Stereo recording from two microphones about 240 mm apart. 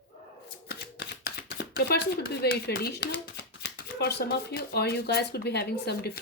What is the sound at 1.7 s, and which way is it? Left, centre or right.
Speech, left.